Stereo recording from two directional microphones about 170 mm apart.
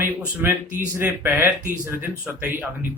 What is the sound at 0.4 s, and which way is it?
Speech, 10° right (ahead or behind).